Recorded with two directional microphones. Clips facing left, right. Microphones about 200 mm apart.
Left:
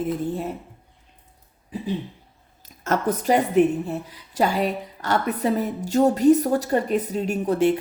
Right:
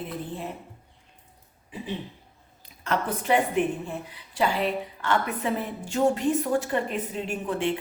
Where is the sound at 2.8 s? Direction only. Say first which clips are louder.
Left 5 dB; 40° left (ahead or behind).